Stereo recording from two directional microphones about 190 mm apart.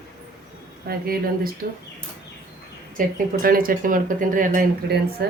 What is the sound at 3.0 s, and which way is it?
Speech, 45° right (ahead or behind).